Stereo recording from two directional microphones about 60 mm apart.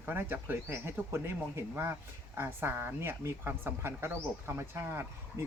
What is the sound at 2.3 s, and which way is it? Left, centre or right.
A woman's voice, right.